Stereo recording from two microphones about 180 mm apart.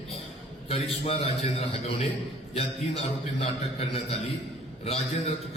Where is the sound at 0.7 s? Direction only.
35° left (ahead or behind).